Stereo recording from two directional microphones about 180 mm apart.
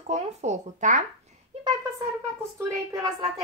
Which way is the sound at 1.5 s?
35° right (ahead or behind).